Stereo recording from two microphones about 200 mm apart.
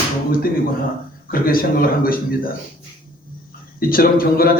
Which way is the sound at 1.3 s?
45° left (ahead or behind).